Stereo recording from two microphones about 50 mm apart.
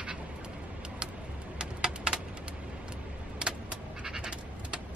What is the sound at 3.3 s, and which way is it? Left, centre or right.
Vehicle, centre.